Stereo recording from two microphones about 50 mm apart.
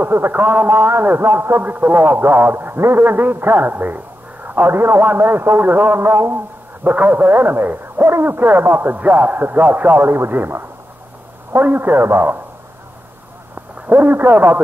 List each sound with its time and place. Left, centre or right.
0.0 s a man's voice: right
0.3 s speech: right
1.2 s a man's voice: right
1.6 s speech: right
4.6 s a man's voice: right
8.9 s speech: right
11.6 s speech: right
13.8 s speech: right